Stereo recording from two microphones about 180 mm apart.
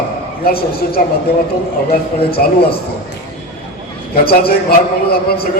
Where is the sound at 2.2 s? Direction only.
60° left (ahead or behind).